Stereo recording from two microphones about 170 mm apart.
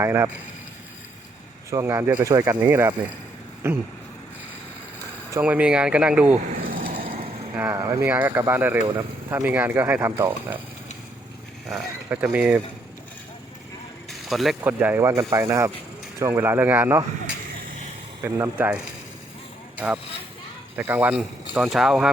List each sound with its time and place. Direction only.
0.0 s speech: 15° right (ahead or behind)
1.7 s speech: 15° right (ahead or behind)
5.3 s speech: 10° right (ahead or behind)
6.7 s a sound: 60° right (ahead or behind)
7.2 s vehicle: 35° right (ahead or behind)
7.5 s speech: 10° right (ahead or behind)
12.0 s speech: 10° right (ahead or behind)
14.1 s mechanisms: centre (ahead or behind)
14.6 s speech: 10° right (ahead or behind)